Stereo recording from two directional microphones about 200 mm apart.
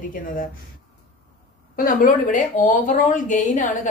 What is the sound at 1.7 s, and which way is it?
Speech, 45° left (ahead or behind).